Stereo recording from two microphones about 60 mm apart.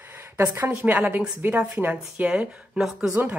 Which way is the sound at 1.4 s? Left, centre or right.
Right.